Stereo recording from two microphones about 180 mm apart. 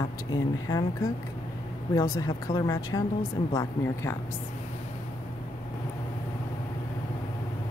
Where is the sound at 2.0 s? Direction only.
20° left (ahead or behind).